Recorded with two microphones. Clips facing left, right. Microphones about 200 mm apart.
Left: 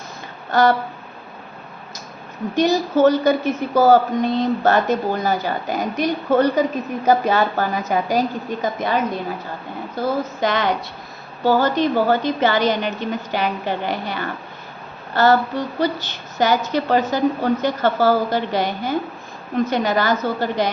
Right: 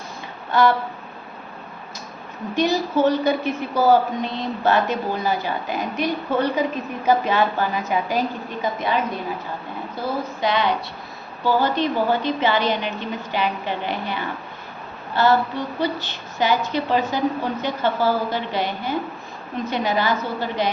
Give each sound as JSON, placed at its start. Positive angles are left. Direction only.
{"t": 2.6, "sound": "a woman's voice", "side_deg": 40}
{"t": 10.4, "sound": "a woman's voice", "side_deg": 45}